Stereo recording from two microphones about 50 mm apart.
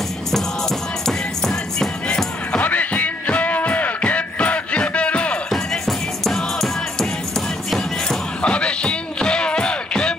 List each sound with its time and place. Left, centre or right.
0.3 s music: centre
2.6 s music: left
5.5 s music: centre
8.4 s music: left